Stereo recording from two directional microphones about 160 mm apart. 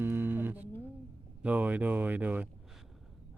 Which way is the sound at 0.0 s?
15° right (ahead or behind).